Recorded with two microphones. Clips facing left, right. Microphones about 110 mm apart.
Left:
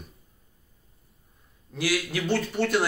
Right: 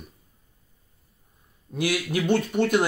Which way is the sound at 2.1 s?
20° right (ahead or behind).